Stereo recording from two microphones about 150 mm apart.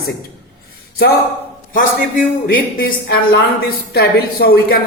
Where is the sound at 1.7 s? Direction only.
65° left (ahead or behind).